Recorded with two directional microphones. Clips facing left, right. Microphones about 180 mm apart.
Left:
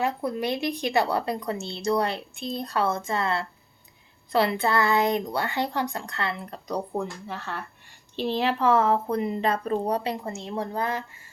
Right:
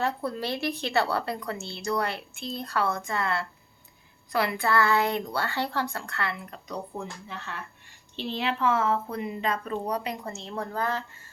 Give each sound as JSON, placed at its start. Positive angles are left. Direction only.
{"t": 0.0, "sound": "a woman's voice", "side_deg": 15}
{"t": 6.5, "sound": "speech", "side_deg": 35}
{"t": 10.3, "sound": "a woman's voice", "side_deg": 20}